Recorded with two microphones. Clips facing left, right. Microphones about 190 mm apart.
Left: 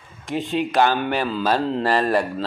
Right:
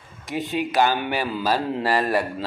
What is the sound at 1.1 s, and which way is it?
A man's voice, 10° right (ahead or behind).